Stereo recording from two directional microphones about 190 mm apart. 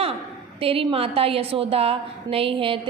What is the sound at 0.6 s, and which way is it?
A woman's voice, 30° right (ahead or behind).